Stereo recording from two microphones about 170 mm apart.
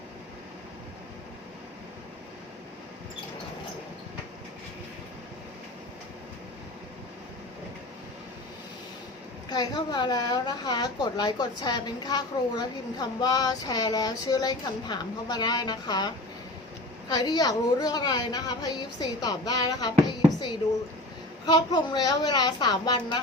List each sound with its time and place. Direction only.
9.5 s speech: 25° left (ahead or behind)